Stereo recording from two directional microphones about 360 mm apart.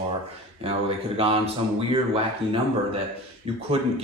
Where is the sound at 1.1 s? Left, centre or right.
Centre.